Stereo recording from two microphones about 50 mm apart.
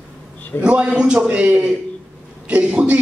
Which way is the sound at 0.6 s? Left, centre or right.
Right.